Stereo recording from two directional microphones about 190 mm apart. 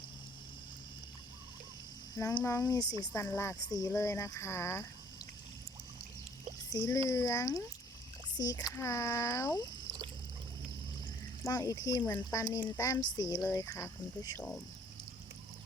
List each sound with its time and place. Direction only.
2.1 s speech: 15° left (ahead or behind)
6.7 s speech: 15° left (ahead or behind)
11.4 s speech: 20° left (ahead or behind)